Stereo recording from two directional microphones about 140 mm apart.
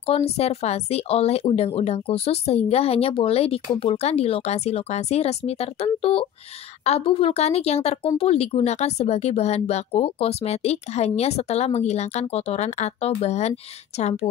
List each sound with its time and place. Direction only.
0.0 s speech: 45° left (ahead or behind)